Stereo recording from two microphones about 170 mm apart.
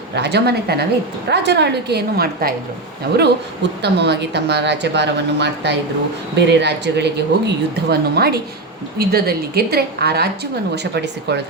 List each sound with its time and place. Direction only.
0.1 s a woman's voice: 80° right
1.3 s a woman's voice: 90° right; by 2.6 s 65° right (ahead or behind)
3.2 s a woman's voice: 80° right
10.9 s speech: 80° right